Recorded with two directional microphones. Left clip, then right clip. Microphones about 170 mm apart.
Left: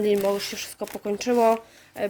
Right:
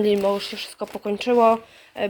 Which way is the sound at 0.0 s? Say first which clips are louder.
Right 2 dB; 10° left (ahead or behind).